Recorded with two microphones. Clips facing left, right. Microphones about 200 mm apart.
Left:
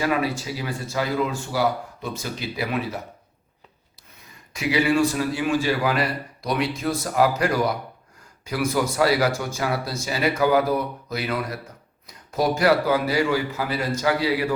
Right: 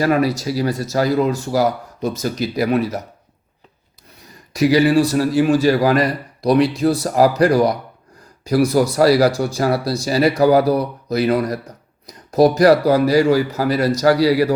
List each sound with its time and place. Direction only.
0.0 s a man's voice: 40° right (ahead or behind)
4.5 s a man's voice: 40° right (ahead or behind)